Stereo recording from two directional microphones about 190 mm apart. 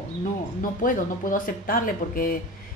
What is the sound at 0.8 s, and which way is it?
A woman's voice, 45° left (ahead or behind).